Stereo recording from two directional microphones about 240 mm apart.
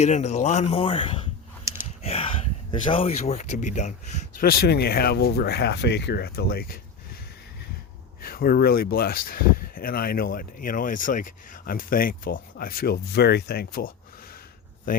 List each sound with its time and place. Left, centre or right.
0.0 s speech: left
1.6 s a sound: centre
2.0 s speech: left
8.2 s speech: left